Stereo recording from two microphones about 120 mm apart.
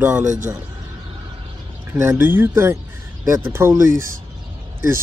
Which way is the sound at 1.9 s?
25° right (ahead or behind).